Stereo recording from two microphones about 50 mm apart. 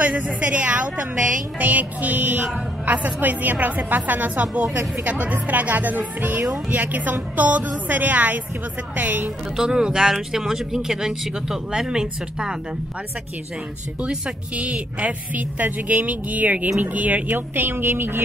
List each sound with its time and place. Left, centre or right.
0.0 s a woman's voice: right
9.6 s speech: centre
14.0 s a woman's voice: right